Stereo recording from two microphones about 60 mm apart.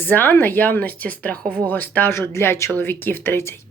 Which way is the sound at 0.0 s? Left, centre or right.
Left.